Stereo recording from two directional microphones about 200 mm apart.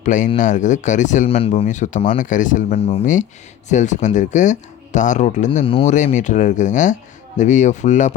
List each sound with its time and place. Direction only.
0.0 s speech: 40° left (ahead or behind)
5.5 s speech: 25° left (ahead or behind)